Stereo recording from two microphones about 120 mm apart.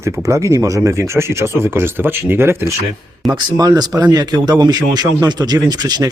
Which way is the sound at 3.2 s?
35° right (ahead or behind).